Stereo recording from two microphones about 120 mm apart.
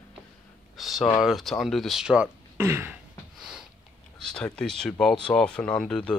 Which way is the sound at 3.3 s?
Centre (ahead or behind).